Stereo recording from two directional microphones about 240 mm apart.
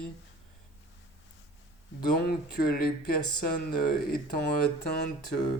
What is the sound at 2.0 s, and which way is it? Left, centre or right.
Speech, left.